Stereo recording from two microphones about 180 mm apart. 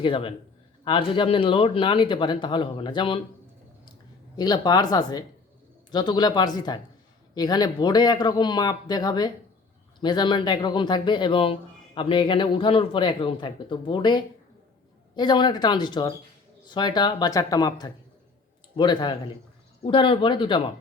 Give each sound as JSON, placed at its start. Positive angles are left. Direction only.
{"t": 0.0, "sound": "a man's voice", "side_deg": 30}
{"t": 4.4, "sound": "a man's voice", "side_deg": 20}